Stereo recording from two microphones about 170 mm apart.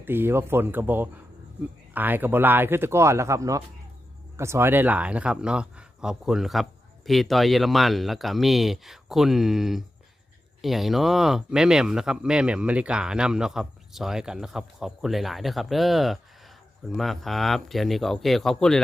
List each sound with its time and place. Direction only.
0.0 s speech: 15° right (ahead or behind)